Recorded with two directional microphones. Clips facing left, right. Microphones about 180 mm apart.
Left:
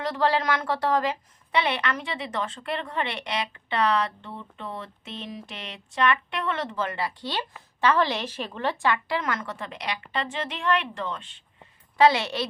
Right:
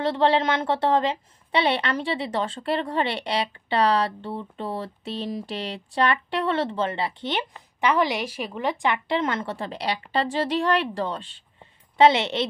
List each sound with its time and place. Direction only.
0.0 s a woman's voice: 25° right (ahead or behind)